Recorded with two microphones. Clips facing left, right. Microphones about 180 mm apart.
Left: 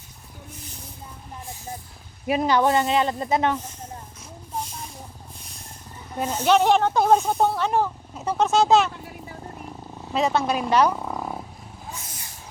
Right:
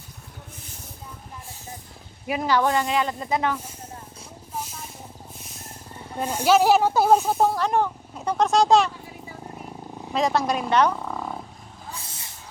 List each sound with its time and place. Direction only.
2.2 s speech: 25° left (ahead or behind)
5.4 s vehicle: centre (ahead or behind)
6.2 s speech: 10° right (ahead or behind)
10.1 s speech: 5° left (ahead or behind)
11.9 s vehicle: 30° right (ahead or behind)